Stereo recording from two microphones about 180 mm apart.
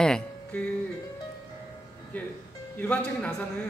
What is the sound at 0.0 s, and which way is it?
Music, 5° left (ahead or behind).